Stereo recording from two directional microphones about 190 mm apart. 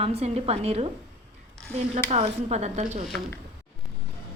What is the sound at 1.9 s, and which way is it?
A woman's voice, 35° right (ahead or behind).